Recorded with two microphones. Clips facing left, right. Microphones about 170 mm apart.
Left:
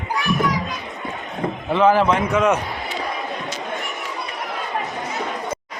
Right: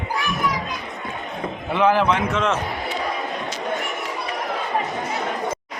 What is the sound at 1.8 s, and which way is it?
Speech, 5° left (ahead or behind).